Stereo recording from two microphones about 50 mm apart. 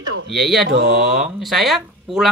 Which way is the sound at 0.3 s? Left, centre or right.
Centre.